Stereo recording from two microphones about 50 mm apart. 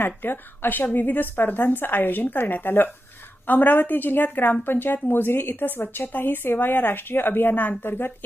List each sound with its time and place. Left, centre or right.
0.0 s a woman's voice: left